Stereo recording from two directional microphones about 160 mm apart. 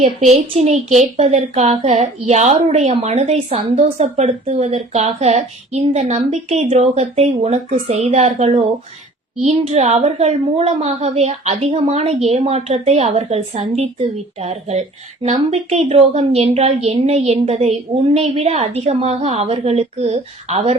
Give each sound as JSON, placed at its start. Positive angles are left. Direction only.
{"t": 0.0, "sound": "a woman's voice", "side_deg": -35}